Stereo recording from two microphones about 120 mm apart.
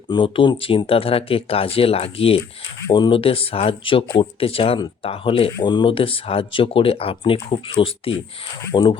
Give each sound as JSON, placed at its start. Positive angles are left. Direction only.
{"t": 0.1, "sound": "speech", "side_deg": 45}